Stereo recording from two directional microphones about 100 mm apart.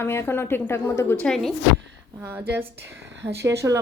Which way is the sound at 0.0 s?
25° left (ahead or behind).